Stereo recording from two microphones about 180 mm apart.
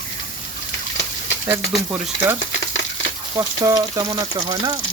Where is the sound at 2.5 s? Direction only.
90° left.